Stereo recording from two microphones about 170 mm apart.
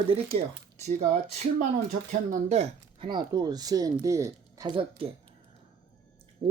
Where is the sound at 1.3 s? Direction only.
45° right (ahead or behind).